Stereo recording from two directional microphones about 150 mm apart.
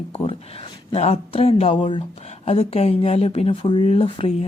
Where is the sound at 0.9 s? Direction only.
45° left (ahead or behind).